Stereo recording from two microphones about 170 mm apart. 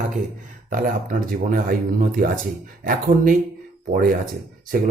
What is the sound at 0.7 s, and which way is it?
Speech, 55° right (ahead or behind).